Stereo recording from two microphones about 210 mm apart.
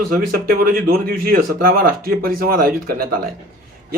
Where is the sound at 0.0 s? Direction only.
45° right (ahead or behind).